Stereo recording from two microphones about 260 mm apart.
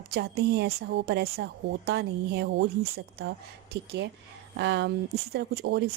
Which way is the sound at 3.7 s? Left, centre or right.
Right.